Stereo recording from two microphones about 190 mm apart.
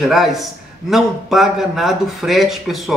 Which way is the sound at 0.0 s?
Centre (ahead or behind).